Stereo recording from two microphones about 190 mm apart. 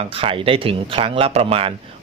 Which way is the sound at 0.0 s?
30° right (ahead or behind).